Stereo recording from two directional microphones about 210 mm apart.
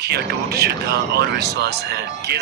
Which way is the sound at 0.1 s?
50° right (ahead or behind).